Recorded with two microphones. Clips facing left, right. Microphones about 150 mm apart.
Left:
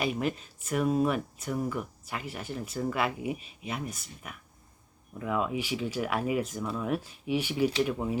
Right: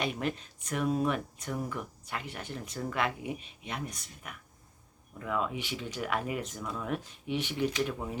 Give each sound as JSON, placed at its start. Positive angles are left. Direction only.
{"t": 0.0, "sound": "speech", "side_deg": 5}